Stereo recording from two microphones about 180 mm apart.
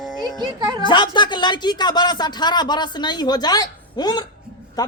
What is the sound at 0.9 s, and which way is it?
Speech, 25° left (ahead or behind).